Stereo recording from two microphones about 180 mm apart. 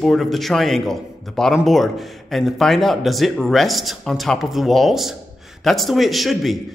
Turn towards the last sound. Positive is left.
turn(degrees=0)  # may be behind; listen again after turning